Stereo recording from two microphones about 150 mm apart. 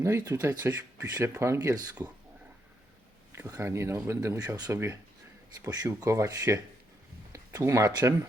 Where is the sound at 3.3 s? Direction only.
20° right (ahead or behind).